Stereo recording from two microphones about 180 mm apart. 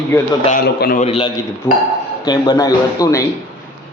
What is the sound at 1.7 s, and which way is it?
Speech, 10° left (ahead or behind).